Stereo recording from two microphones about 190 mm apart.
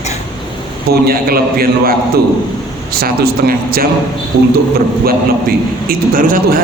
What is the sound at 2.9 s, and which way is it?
A man's voice, 50° right (ahead or behind).